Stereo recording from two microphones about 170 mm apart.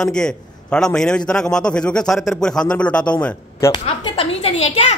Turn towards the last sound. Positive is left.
turn(degrees=35)  # may be behind; listen again after turning